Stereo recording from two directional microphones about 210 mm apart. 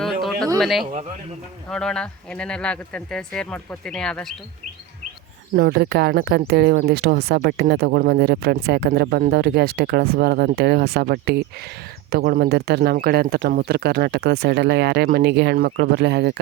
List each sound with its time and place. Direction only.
0.0 s a sound: centre (ahead or behind)
0.6 s speech: centre (ahead or behind)
5.5 s speech: 50° right (ahead or behind)